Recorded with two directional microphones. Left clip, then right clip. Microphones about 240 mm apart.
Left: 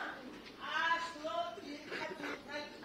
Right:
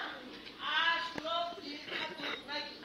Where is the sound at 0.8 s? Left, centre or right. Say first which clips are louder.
Right 3 dB; centre.